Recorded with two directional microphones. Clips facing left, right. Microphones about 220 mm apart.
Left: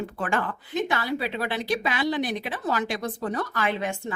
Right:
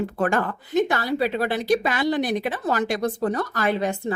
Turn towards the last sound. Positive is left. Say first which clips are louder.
# right 4 dB
turn(degrees=-35)  # may be behind; listen again after turning